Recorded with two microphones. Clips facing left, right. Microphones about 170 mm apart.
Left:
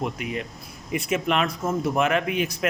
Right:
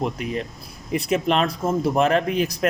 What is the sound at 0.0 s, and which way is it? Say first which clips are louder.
Speech: right 3 dB; 35° right (ahead or behind).